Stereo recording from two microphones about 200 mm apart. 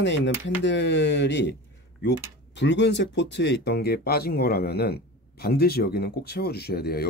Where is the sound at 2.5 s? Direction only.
60° left (ahead or behind).